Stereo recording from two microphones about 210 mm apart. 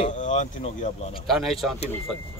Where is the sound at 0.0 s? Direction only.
35° left (ahead or behind).